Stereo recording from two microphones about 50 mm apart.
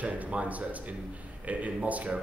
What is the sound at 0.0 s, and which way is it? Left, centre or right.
A man's voice, right.